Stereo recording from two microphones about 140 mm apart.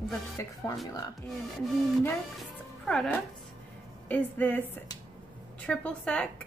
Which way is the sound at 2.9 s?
5° left (ahead or behind).